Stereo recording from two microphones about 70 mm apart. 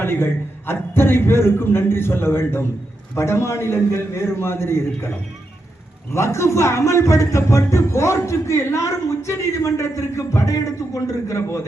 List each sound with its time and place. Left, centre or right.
0.0 s a man's voice: left